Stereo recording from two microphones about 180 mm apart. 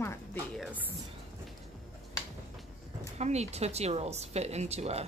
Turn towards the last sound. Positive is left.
turn(degrees=-35)  # may be behind; listen again after turning